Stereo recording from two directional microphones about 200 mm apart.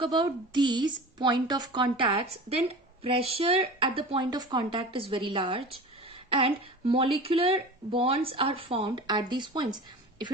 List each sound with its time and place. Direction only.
0.0 s a woman's voice: 25° right (ahead or behind)